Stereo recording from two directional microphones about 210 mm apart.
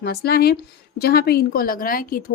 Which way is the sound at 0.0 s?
50° left (ahead or behind).